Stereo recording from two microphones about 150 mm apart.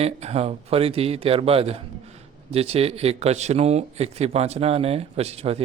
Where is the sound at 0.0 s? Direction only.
45° right (ahead or behind).